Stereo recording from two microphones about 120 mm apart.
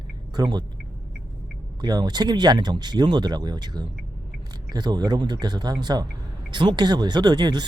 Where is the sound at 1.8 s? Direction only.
35° right (ahead or behind).